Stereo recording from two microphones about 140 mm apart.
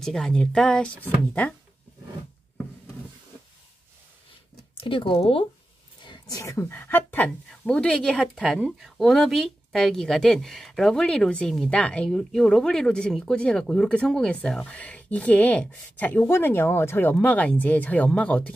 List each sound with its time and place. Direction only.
0.0 s speech: 5° left (ahead or behind)
4.7 s speech: 40° left (ahead or behind)
6.0 s speech: 30° left (ahead or behind); by 18.5 s 10° left (ahead or behind)